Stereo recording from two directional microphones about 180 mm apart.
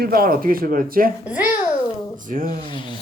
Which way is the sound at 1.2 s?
10° right (ahead or behind).